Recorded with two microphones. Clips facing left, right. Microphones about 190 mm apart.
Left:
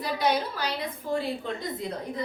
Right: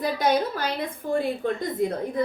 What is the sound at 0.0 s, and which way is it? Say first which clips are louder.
Speech: right 4 dB; 50° right (ahead or behind).